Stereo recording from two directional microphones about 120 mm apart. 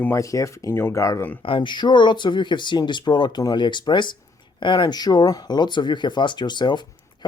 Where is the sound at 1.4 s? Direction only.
45° left (ahead or behind).